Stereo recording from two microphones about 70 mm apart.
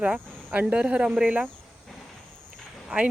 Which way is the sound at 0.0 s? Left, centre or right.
Centre.